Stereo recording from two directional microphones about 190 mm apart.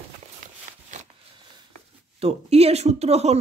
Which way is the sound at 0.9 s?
40° right (ahead or behind).